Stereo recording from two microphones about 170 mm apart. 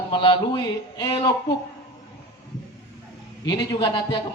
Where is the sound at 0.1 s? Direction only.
30° left (ahead or behind).